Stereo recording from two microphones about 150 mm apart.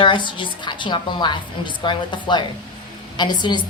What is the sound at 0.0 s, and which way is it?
A woman's voice, 30° left (ahead or behind).